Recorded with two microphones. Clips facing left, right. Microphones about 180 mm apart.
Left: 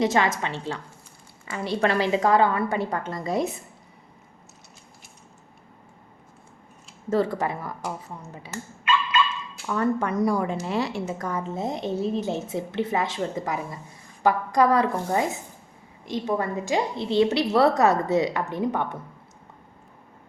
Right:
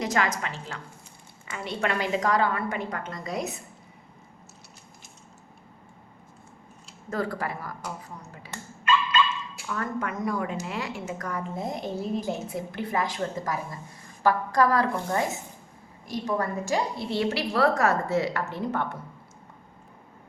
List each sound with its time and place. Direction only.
0.0 s a woman's voice: 25° left (ahead or behind)
7.1 s a woman's voice: 25° left (ahead or behind)
9.7 s a woman's voice: 30° left (ahead or behind)